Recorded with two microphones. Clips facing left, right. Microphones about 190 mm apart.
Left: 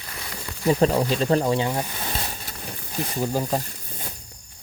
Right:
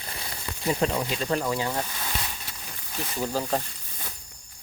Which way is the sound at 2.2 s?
40° left (ahead or behind).